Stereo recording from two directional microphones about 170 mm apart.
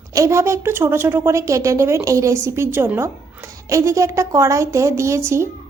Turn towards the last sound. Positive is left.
turn(degrees=-15)  # may be behind; listen again after turning